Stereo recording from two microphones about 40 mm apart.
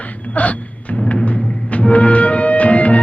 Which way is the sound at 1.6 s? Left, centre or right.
Left.